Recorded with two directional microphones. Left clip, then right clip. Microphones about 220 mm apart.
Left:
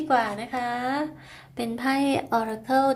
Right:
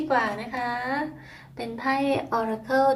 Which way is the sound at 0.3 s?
45° left (ahead or behind).